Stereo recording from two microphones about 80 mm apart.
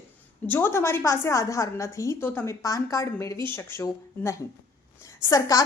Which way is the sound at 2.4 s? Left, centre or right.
Left.